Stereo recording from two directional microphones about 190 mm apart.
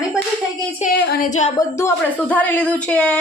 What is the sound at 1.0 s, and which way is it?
Speech, 60° left (ahead or behind).